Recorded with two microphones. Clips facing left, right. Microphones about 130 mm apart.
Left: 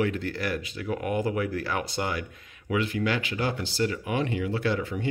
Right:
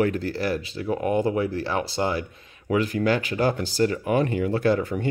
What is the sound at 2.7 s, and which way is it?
Speech, 40° right (ahead or behind).